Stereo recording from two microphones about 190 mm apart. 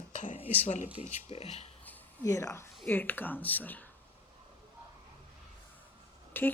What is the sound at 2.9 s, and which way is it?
Speech, 10° left (ahead or behind).